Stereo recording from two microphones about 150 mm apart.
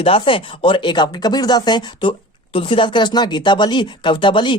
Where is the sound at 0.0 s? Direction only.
40° left (ahead or behind).